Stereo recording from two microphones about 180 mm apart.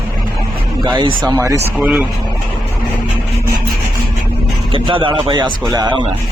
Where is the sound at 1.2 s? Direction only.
20° right (ahead or behind).